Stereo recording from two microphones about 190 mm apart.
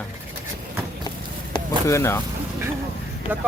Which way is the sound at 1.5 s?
15° left (ahead or behind).